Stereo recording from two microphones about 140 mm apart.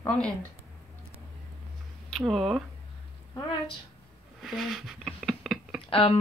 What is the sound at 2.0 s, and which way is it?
Speech, centre (ahead or behind).